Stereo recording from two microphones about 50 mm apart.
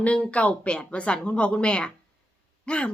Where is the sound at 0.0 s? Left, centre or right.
Left.